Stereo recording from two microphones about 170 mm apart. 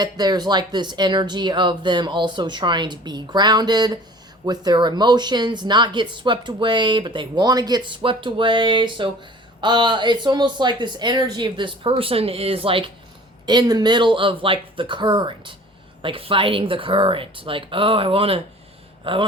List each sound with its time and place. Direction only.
0.0 s speech: 25° right (ahead or behind)